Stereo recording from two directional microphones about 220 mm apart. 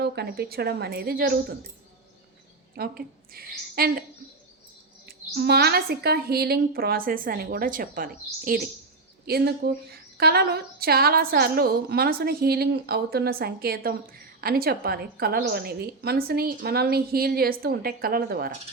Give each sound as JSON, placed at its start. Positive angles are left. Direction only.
{"t": 0.0, "sound": "speech", "side_deg": -45}
{"t": 2.8, "sound": "a woman's voice", "side_deg": -45}
{"t": 5.0, "sound": "speech", "side_deg": -45}